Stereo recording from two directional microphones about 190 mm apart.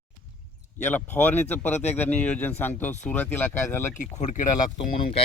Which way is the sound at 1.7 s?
35° left (ahead or behind).